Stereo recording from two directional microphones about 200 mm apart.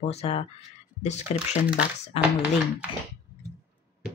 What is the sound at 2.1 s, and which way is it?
Speech, 30° left (ahead or behind).